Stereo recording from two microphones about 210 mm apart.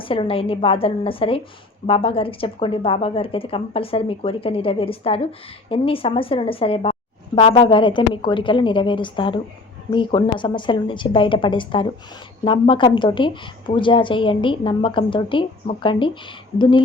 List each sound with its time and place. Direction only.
0.0 s a woman's voice: 25° left (ahead or behind)